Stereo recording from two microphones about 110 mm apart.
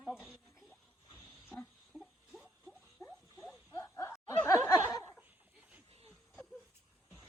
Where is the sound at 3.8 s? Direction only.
25° left (ahead or behind).